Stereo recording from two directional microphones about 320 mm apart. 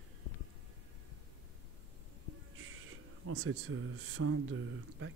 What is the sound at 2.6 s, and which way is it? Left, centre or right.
Speech, right.